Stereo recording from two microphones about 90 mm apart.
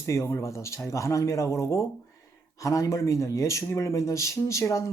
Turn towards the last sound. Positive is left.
turn(degrees=35)  # may be behind; listen again after turning